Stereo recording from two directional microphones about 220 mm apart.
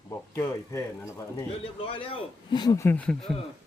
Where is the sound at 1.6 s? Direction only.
25° left (ahead or behind); by 3.4 s 5° left (ahead or behind).